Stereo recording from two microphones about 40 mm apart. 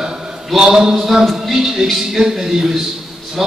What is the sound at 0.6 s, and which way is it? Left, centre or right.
A man's voice, centre.